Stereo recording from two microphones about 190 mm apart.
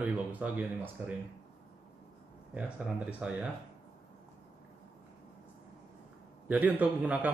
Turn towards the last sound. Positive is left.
turn(degrees=-10)  # may be behind; listen again after turning